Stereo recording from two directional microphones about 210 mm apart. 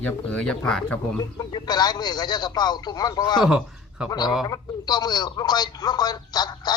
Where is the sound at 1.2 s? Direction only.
20° left (ahead or behind).